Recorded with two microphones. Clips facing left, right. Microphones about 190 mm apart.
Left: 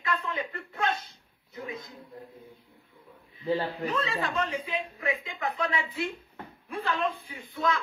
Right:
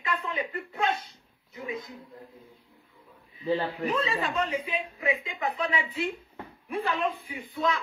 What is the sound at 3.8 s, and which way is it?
A man's voice, 15° right (ahead or behind).